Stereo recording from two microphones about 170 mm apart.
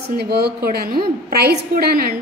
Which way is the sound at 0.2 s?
70° right (ahead or behind).